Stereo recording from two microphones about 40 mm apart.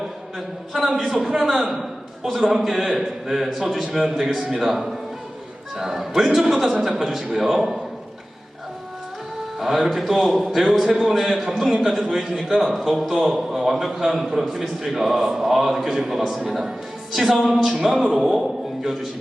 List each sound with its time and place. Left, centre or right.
0.9 s a man's voice: centre
4.1 s speech: centre
4.5 s speech: centre
9.6 s a man's voice: centre
11.7 s a man's voice: centre
13.1 s a man's voice: centre
17.1 s music: centre
17.4 s a man's voice: centre